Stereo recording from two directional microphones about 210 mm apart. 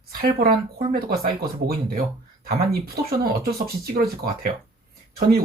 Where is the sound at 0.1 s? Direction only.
45° right (ahead or behind).